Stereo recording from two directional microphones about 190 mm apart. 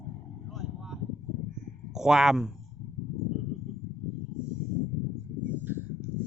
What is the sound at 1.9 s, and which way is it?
Speech, 5° right (ahead or behind).